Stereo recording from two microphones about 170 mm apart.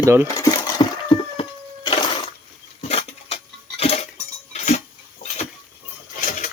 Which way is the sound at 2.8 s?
40° left (ahead or behind).